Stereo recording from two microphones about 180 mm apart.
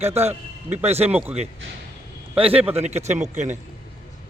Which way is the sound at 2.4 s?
30° right (ahead or behind).